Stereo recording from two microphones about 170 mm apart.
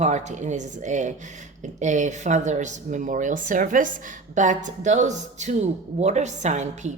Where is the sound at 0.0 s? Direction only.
45° right (ahead or behind).